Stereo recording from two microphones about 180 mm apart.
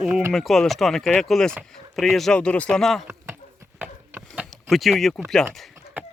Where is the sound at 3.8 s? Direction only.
5° right (ahead or behind).